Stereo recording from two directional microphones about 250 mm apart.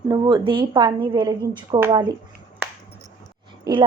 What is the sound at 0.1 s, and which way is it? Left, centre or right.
A woman's voice, centre.